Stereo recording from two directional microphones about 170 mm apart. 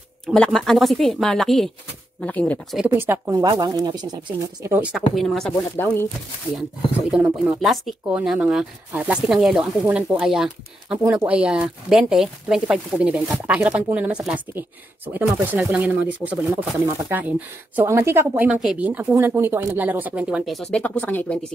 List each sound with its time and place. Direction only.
0.3 s speech: centre (ahead or behind)
2.8 s speech: 10° right (ahead or behind)
4.6 s speech: 10° right (ahead or behind)
4.9 s speech: centre (ahead or behind)
5.8 s speech: 15° left (ahead or behind)
7.1 s speech: 5° right (ahead or behind)
20.7 s speech: 10° left (ahead or behind)